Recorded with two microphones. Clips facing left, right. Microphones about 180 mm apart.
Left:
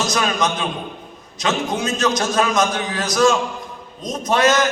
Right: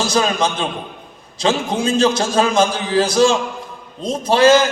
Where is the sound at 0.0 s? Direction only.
30° right (ahead or behind).